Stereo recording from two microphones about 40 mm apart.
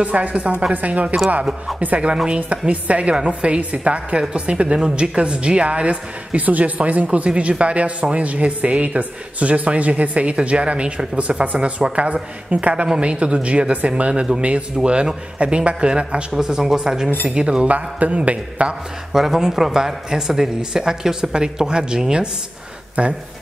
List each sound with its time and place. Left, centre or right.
0.0 s speech: right
2.2 s a woman's voice: right
16.3 s a woman's voice: centre
17.6 s speech: right
19.1 s speech: centre
23.0 s speech: right